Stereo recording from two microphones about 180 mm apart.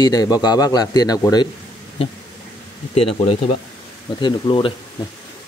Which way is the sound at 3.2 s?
30° left (ahead or behind).